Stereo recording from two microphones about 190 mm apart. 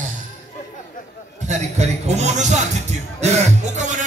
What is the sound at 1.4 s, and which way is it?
Music, 35° right (ahead or behind).